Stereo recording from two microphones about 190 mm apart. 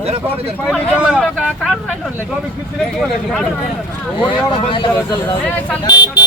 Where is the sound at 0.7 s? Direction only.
5° right (ahead or behind).